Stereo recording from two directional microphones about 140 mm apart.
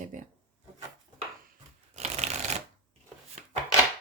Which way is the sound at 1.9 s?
50° right (ahead or behind).